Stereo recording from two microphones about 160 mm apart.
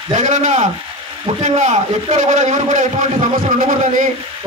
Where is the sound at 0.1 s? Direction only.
50° right (ahead or behind).